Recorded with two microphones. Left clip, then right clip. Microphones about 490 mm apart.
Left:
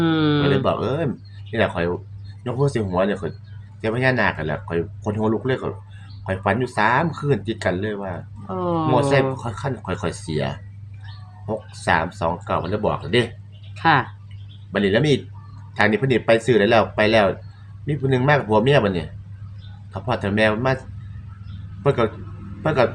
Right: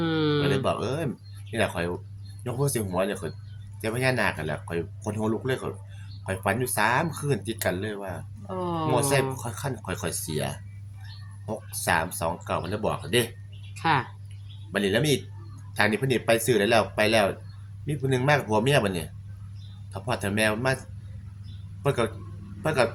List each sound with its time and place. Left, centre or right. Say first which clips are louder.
0.0 s a sound: left 6 dB; right
2.4 s speech: left 6 dB; right
21.8 s speech: left 6 dB; right